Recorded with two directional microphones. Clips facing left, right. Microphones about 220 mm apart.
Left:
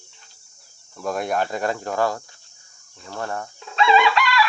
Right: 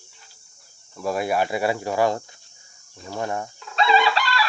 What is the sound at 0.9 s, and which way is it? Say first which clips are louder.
Speech: right 1 dB; 5° right (ahead or behind).